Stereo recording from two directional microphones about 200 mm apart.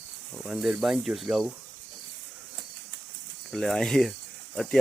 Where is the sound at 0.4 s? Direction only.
5° right (ahead or behind).